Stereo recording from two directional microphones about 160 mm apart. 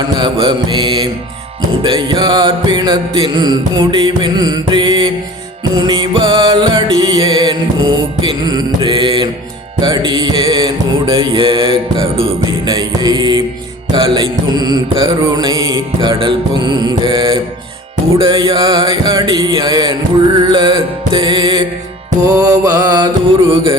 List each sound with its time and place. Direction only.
0.2 s music: 30° right (ahead or behind)
12.4 s music: 25° right (ahead or behind)